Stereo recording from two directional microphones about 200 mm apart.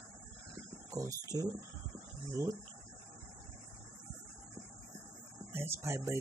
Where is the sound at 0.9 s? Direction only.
15° right (ahead or behind).